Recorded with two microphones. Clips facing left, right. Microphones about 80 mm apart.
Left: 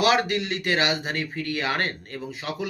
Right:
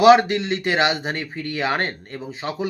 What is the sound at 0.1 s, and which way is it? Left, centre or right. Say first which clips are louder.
Speech: right 9 dB; right.